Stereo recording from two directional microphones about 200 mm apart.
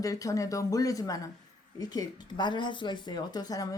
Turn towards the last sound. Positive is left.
turn(degrees=20)  # may be behind; listen again after turning